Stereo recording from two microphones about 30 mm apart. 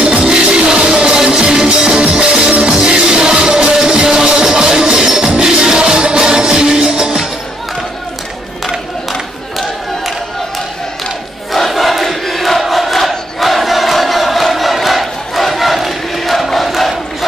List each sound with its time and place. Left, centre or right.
0.0 s music: right
11.5 s crowd: centre